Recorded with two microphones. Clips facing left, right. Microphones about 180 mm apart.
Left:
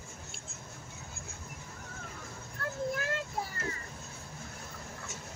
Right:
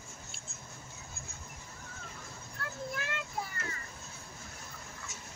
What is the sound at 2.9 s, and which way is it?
Vehicle, 40° left (ahead or behind).